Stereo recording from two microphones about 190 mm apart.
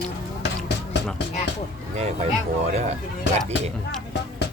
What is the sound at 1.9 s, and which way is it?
Speech, 35° right (ahead or behind).